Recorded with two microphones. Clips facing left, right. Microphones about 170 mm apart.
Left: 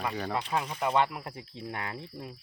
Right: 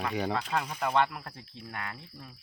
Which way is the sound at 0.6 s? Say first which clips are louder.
Left 1 dB; 5° left (ahead or behind).